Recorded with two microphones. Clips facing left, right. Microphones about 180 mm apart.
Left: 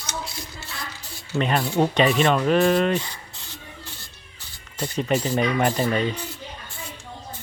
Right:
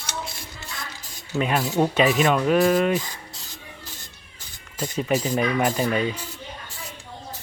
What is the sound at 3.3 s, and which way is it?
Rub, 40° right (ahead or behind).